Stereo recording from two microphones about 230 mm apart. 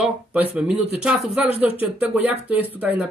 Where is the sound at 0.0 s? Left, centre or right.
Centre.